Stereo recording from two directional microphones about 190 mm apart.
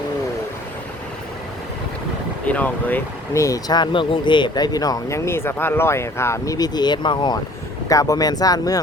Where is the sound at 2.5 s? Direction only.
10° left (ahead or behind).